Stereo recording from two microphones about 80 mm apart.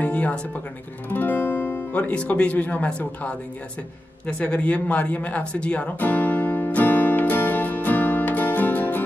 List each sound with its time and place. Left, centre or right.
0.0 s music: centre
1.1 s speech: left
4.3 s music: centre